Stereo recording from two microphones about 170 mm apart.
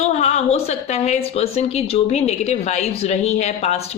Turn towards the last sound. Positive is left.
turn(degrees=40)  # may be behind; listen again after turning